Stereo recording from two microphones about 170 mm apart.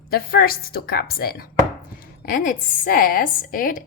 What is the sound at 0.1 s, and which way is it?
A woman's voice, 60° left (ahead or behind).